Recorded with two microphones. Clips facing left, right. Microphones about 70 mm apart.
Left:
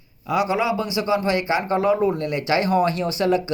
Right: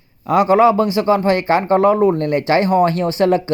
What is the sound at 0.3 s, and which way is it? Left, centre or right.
Speech, right.